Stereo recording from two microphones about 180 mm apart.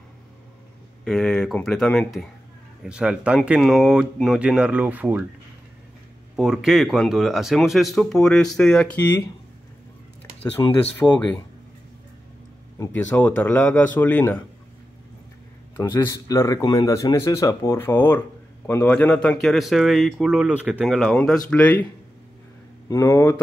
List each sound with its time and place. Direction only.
1.0 s speech: centre (ahead or behind)
6.3 s speech: centre (ahead or behind)
10.6 s speech: 20° left (ahead or behind)
11.0 s speech: 10° left (ahead or behind)
12.7 s speech: 15° left (ahead or behind)
15.8 s speech: 15° left (ahead or behind)
22.8 s speech: 15° left (ahead or behind)